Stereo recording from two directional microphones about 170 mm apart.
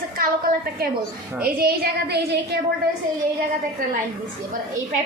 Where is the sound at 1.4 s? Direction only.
65° right (ahead or behind).